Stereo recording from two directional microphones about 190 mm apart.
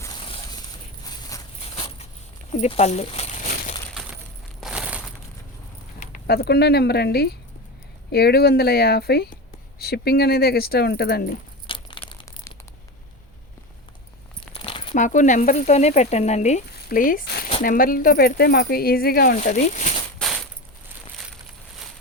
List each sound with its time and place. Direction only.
0.3 s a sound: 20° left (ahead or behind)
2.5 s speech: 35° left (ahead or behind)
4.6 s crushing: 5° right (ahead or behind)
6.0 s speech: 50° left (ahead or behind)
11.7 s crumpling: 25° left (ahead or behind)
14.5 s keys jangling: 30° left (ahead or behind)
14.9 s speech: 40° left (ahead or behind)
16.7 s zipper: 45° left (ahead or behind)
17.6 s speech: 50° left (ahead or behind)